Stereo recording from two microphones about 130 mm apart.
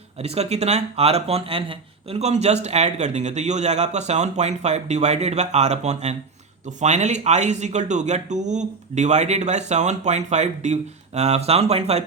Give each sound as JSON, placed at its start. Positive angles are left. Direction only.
{"t": 0.2, "sound": "speech", "side_deg": -55}